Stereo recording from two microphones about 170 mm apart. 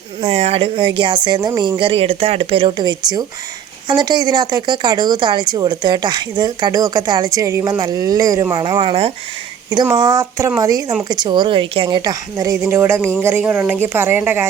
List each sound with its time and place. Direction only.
0.2 s speech: 40° right (ahead or behind)
9.9 s a woman's voice: 25° right (ahead or behind)